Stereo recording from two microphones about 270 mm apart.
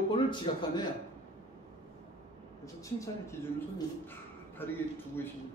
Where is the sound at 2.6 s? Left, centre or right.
Centre.